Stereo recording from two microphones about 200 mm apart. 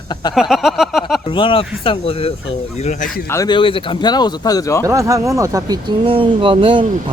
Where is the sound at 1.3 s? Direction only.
25° left (ahead or behind).